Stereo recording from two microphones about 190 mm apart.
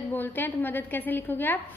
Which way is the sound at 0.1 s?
10° left (ahead or behind).